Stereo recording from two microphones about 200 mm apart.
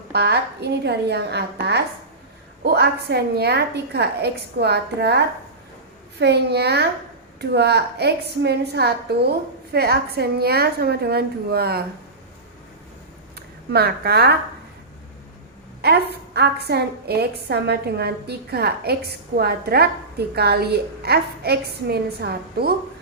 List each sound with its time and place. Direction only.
0.1 s a woman's voice: 55° right (ahead or behind)
13.3 s speech: 55° right (ahead or behind)
16.1 s a woman's voice: 55° right (ahead or behind)